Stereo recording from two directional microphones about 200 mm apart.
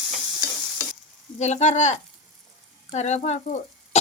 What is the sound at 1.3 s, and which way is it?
Speech, 35° left (ahead or behind).